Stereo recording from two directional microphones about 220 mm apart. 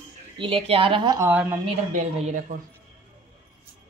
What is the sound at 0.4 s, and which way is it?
Speech, 25° right (ahead or behind).